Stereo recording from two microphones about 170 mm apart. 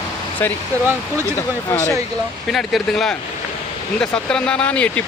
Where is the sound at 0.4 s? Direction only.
10° left (ahead or behind).